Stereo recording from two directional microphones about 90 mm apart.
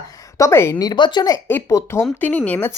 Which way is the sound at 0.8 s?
50° left (ahead or behind).